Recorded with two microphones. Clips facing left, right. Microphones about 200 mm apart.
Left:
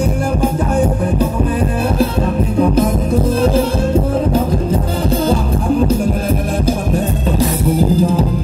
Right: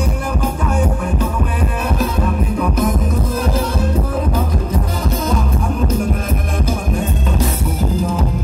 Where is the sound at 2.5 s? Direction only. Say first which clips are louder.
Left 10 dB; 30° left (ahead or behind).